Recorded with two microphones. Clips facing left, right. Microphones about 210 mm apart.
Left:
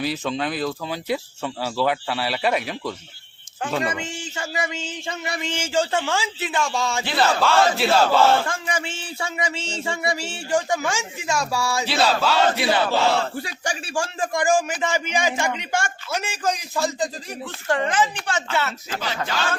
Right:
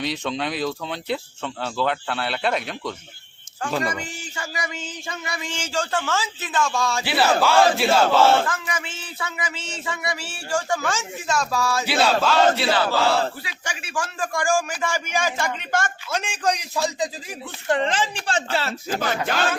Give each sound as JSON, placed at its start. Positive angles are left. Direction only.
{"t": 0.0, "sound": "speech", "side_deg": 5}
{"t": 3.7, "sound": "battle cry", "side_deg": 0}
{"t": 4.0, "sound": "speech", "side_deg": 25}
{"t": 7.0, "sound": "battle cry", "side_deg": -5}
{"t": 8.4, "sound": "speech", "side_deg": 30}
{"t": 11.9, "sound": "battle cry", "side_deg": 0}
{"t": 12.5, "sound": "speech", "side_deg": 20}
{"t": 13.3, "sound": "speech", "side_deg": 45}
{"t": 17.7, "sound": "a woman's voice", "side_deg": -25}
{"t": 18.9, "sound": "speech", "side_deg": -50}